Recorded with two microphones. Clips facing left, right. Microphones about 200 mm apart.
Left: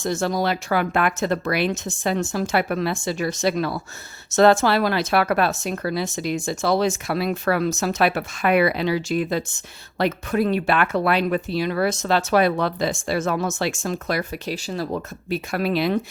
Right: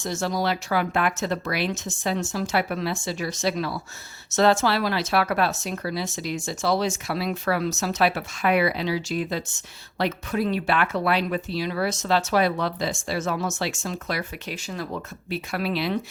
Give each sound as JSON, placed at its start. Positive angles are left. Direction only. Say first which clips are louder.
{"t": 0.0, "sound": "speech", "louder": "left 3 dB", "side_deg": 55}
{"t": 15.3, "sound": "speech", "louder": "left 4 dB", "side_deg": 45}